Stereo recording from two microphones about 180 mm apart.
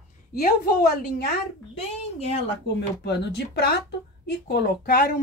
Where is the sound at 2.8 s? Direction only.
70° left (ahead or behind).